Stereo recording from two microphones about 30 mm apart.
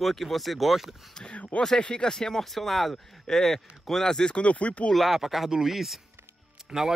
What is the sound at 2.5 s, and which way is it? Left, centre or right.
Speech, centre.